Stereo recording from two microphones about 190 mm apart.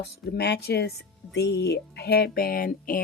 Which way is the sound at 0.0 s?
60° left (ahead or behind).